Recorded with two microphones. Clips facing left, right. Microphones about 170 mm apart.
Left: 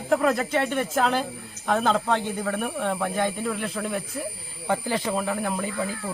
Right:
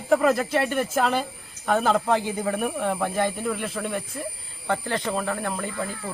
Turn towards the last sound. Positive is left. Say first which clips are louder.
# left 2 dB
turn(degrees=5)  # may be behind; listen again after turning